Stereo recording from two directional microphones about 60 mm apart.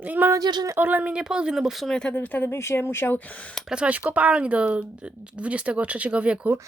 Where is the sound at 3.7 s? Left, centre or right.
Centre.